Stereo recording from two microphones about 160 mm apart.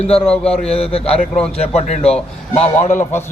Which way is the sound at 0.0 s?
40° left (ahead or behind).